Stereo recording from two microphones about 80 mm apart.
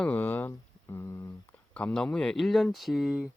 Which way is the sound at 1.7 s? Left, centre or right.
Centre.